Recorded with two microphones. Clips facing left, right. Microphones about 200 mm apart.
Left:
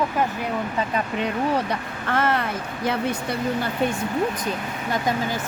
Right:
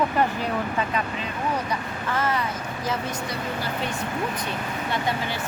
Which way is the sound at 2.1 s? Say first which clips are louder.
Left 4 dB; 60° left (ahead or behind).